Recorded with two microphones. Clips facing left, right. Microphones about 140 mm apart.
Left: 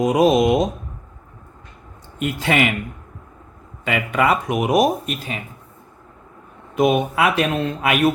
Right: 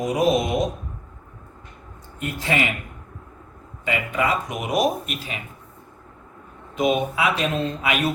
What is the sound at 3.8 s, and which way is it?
Speech, 70° left (ahead or behind).